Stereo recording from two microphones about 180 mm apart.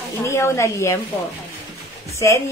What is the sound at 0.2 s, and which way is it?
Speech, 15° left (ahead or behind).